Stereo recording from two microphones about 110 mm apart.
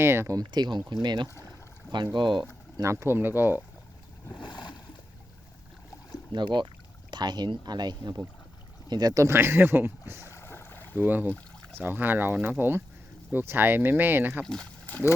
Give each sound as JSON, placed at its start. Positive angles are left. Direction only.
{"t": 0.0, "sound": "speech", "side_deg": -20}
{"t": 0.3, "sound": "speech", "side_deg": -40}
{"t": 2.7, "sound": "speech", "side_deg": -25}
{"t": 4.4, "sound": "boat", "side_deg": 40}
{"t": 6.3, "sound": "speech", "side_deg": -45}
{"t": 10.2, "sound": "boat", "side_deg": 25}
{"t": 10.9, "sound": "speech", "side_deg": -15}
{"t": 11.3, "sound": "a sound", "side_deg": 10}
{"t": 11.8, "sound": "speech", "side_deg": -15}
{"t": 14.4, "sound": "speech", "side_deg": 5}